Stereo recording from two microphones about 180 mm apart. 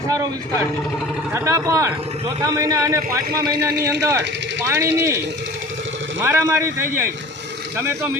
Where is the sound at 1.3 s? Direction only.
15° right (ahead or behind).